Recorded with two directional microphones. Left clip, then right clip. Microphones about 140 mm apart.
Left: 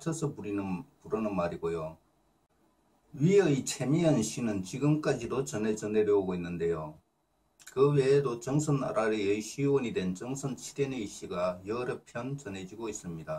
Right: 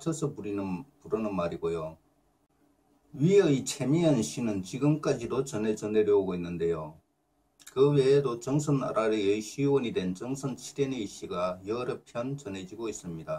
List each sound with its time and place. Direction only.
0.0 s speech: 20° right (ahead or behind)
3.2 s speech: 20° right (ahead or behind)